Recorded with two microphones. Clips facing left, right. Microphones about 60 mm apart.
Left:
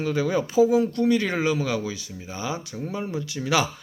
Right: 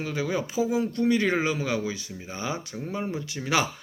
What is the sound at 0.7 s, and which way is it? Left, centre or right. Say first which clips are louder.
Speech: left 4 dB; right.